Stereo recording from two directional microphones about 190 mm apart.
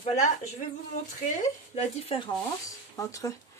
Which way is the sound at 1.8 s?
30° left (ahead or behind).